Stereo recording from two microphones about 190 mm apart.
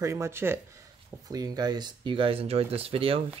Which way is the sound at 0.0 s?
15° right (ahead or behind).